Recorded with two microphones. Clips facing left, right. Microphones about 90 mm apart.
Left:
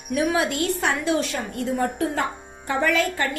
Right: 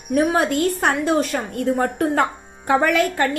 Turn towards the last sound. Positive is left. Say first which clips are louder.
# right 4 dB
turn(degrees=-50)  # may be behind; listen again after turning